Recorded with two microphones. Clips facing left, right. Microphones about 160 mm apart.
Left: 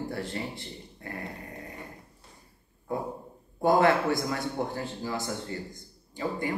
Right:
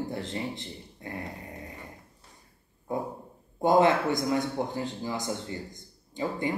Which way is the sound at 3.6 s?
20° right (ahead or behind).